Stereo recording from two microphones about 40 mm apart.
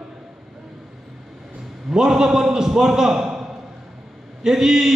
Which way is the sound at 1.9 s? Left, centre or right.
Centre.